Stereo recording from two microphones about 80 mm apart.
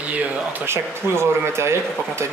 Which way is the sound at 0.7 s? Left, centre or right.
Right.